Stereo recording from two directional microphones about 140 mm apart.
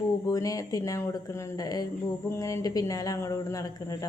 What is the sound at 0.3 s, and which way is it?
A woman's voice, 25° left (ahead or behind).